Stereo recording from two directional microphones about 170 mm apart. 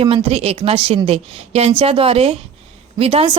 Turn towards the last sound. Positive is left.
turn(degrees=-35)  # may be behind; listen again after turning